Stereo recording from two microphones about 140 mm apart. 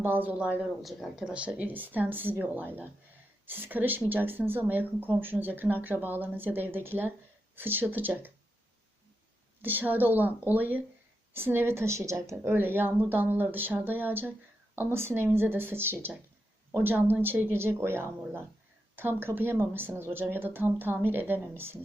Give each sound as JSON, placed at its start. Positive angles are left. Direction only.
{"t": 0.0, "sound": "speech", "side_deg": -15}
{"t": 9.6, "sound": "speech", "side_deg": -15}